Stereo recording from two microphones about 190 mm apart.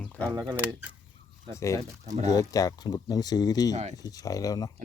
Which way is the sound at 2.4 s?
20° left (ahead or behind).